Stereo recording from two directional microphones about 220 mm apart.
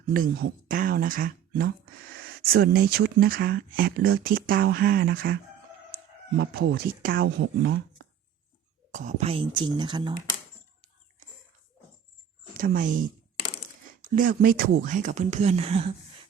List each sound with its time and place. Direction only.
0.1 s speech: 40° right (ahead or behind)
8.9 s speech: 35° right (ahead or behind)
12.5 s speech: 40° right (ahead or behind)
14.2 s speech: 40° right (ahead or behind)